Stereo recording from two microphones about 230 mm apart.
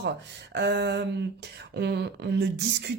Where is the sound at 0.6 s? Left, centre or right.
Right.